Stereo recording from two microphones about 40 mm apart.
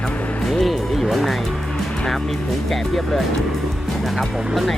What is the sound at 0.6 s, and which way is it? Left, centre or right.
Music, centre.